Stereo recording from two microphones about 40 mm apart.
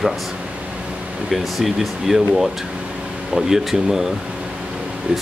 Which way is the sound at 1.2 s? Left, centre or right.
Centre.